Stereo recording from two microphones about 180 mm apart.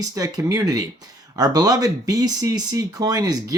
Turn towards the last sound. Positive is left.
turn(degrees=-20)  # may be behind; listen again after turning